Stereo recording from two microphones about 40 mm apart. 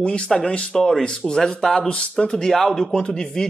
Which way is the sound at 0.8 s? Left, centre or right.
Centre.